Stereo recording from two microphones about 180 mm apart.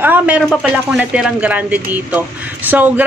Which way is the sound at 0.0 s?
10° right (ahead or behind).